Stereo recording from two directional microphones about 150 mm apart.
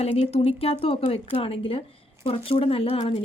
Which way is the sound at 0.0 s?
45° left (ahead or behind).